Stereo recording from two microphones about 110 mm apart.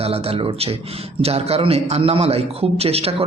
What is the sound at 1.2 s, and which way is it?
A man's voice, 65° right (ahead or behind).